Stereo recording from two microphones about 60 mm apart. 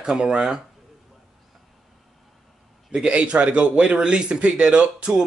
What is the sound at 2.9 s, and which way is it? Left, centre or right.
A man's voice, centre.